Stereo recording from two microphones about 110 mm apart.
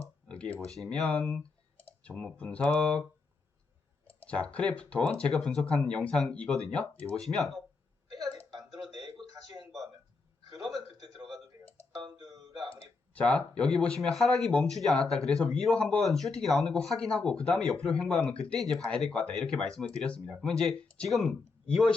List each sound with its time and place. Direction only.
0.3 s speech: 10° left (ahead or behind)
4.0 s speech: 10° left (ahead or behind)
7.2 s speech: centre (ahead or behind)
10.6 s a sound: centre (ahead or behind)
12.1 s music: 35° right (ahead or behind)
13.1 s speech: 10° left (ahead or behind)